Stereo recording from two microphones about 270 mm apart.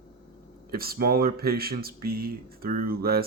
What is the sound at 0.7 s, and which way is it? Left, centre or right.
Speech, right.